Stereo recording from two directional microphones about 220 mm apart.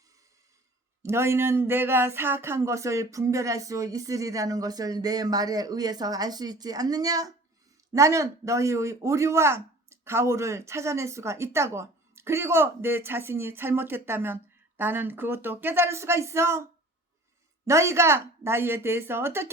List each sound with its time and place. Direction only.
1.0 s speech: 10° right (ahead or behind)
17.7 s speech: 15° right (ahead or behind)